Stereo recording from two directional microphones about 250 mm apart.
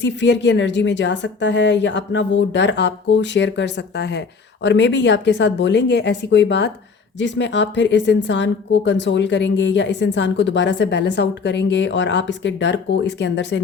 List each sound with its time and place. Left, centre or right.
0.0 s a woman's voice: left